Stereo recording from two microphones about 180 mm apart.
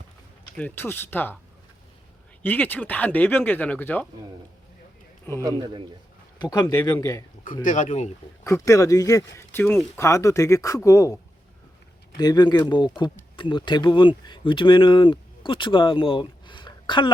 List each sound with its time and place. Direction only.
0.5 s speech: 10° left (ahead or behind)
2.4 s speech: 10° left (ahead or behind)
5.4 s a man's voice: 20° right (ahead or behind)
6.4 s speech: 20° left (ahead or behind)
7.6 s speech: 45° left (ahead or behind)
8.4 s speech: 15° left (ahead or behind)